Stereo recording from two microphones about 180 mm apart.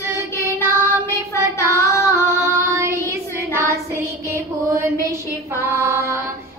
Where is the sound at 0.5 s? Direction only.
15° left (ahead or behind).